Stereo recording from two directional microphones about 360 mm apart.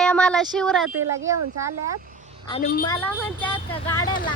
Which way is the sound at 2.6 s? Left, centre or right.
Left.